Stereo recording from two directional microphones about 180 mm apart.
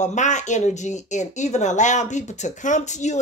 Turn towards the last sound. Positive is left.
turn(degrees=40)  # may be behind; listen again after turning